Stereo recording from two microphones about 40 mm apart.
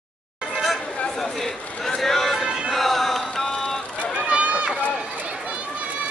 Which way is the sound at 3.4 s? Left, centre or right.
Centre.